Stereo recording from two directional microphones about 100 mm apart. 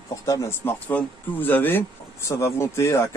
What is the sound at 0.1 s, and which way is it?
Speech, 30° left (ahead or behind).